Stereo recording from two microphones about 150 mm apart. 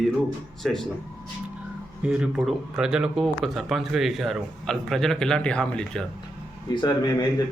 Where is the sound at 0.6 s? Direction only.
Centre (ahead or behind).